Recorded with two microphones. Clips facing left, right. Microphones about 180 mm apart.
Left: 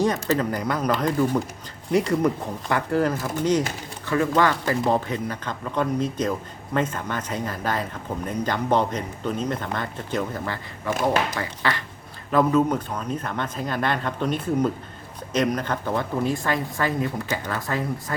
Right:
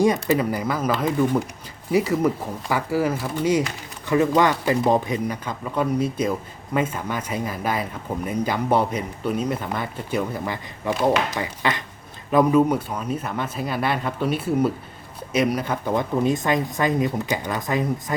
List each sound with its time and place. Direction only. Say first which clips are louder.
0.0 s speech: right 3 dB; 10° right (ahead or behind)